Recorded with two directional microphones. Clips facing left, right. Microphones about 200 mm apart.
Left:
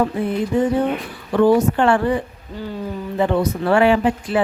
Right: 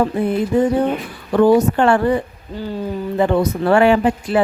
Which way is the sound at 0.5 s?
40° right (ahead or behind).